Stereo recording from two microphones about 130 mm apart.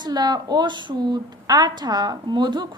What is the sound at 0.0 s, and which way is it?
A woman's voice, 30° right (ahead or behind).